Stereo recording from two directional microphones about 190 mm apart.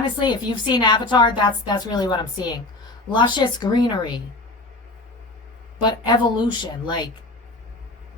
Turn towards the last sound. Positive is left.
turn(degrees=25)  # may be behind; listen again after turning